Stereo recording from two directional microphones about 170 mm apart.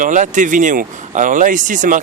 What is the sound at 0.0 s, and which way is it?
Speech, 50° right (ahead or behind).